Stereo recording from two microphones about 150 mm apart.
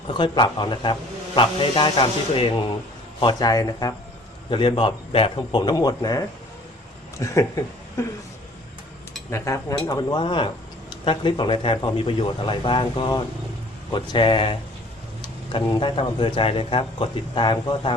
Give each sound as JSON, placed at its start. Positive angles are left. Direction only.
{"t": 0.1, "sound": "speech", "side_deg": 30}
{"t": 9.3, "sound": "speech", "side_deg": 20}